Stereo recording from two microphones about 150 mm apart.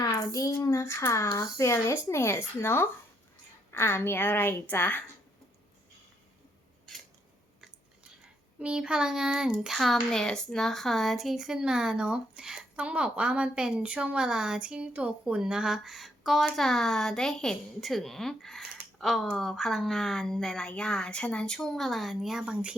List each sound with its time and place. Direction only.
0.0 s a child's voice: 25° left (ahead or behind)
8.5 s a child's voice: 5° right (ahead or behind)